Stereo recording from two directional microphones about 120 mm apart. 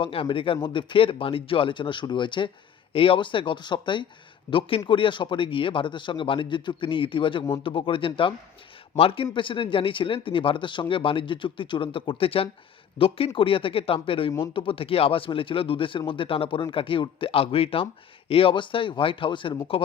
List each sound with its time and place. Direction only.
0.0 s speech: 45° left (ahead or behind)
4.5 s speech: 20° left (ahead or behind)
4.9 s speech: 45° left (ahead or behind)